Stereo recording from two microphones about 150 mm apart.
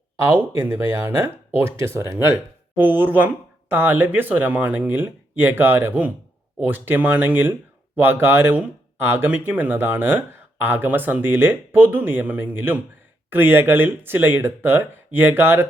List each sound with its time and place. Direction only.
0.2 s speech: 15° right (ahead or behind)